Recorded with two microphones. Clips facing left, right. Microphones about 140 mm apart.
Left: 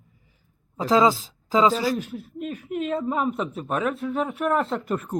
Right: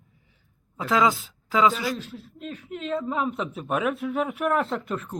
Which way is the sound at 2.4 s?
10° left (ahead or behind).